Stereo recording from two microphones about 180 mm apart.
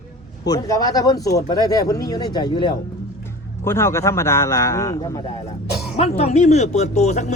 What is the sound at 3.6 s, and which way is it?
A man's voice, 15° left (ahead or behind).